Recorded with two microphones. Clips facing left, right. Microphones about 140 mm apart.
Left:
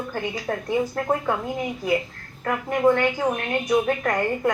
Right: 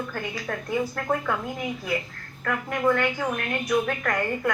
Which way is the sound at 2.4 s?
25° left (ahead or behind).